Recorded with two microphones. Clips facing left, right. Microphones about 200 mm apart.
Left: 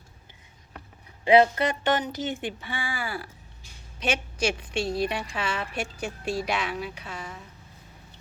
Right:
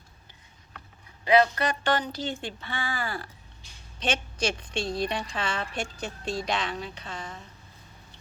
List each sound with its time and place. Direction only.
1.2 s speech: 25° left (ahead or behind); by 7.4 s 10° left (ahead or behind)